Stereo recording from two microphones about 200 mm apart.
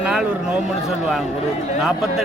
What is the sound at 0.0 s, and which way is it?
Speech, 5° right (ahead or behind).